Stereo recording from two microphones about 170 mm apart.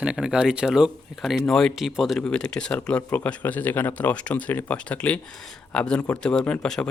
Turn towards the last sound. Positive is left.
turn(degrees=5)  # may be behind; listen again after turning